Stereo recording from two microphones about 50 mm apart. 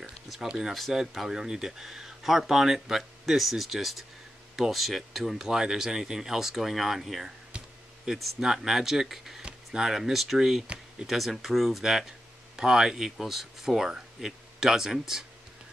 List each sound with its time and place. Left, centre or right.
0.5 s speech: centre
0.7 s speech: centre
7.5 s a sound: centre
8.2 s speech: centre